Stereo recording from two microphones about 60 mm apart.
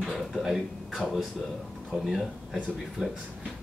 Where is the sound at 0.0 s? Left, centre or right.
Centre.